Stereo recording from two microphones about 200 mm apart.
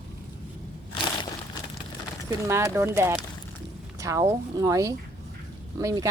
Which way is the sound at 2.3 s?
15° right (ahead or behind).